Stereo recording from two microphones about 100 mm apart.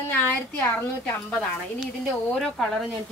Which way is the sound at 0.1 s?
20° left (ahead or behind).